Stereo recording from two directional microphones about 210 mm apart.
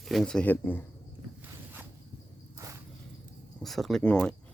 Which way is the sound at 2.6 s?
15° right (ahead or behind).